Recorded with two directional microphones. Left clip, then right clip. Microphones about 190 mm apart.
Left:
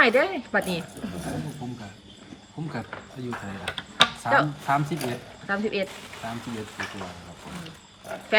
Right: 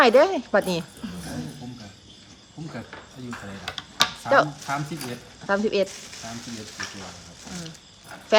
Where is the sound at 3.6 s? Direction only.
20° left (ahead or behind).